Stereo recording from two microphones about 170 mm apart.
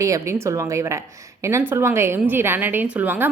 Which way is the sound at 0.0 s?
15° right (ahead or behind).